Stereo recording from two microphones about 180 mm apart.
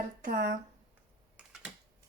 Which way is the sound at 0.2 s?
50° right (ahead or behind).